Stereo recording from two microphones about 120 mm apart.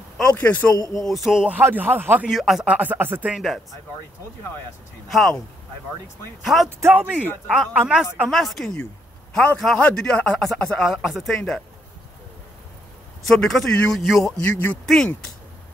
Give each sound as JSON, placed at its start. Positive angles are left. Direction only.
{"t": 0.2, "sound": "a man's voice", "side_deg": 10}
{"t": 0.9, "sound": "speech", "side_deg": 0}
{"t": 2.2, "sound": "speech", "side_deg": 0}
{"t": 3.3, "sound": "speech", "side_deg": 0}
{"t": 5.0, "sound": "speech", "side_deg": 0}
{"t": 6.4, "sound": "speech", "side_deg": 0}
{"t": 6.8, "sound": "a man's voice", "side_deg": -15}
{"t": 9.6, "sound": "speech", "side_deg": 0}
{"t": 13.3, "sound": "speech", "side_deg": 5}
{"t": 14.4, "sound": "a man's voice", "side_deg": 15}